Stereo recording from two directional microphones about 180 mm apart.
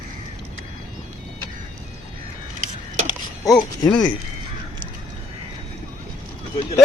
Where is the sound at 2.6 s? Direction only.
40° right (ahead or behind).